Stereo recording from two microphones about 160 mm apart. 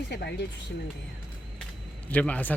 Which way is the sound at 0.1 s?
90° left.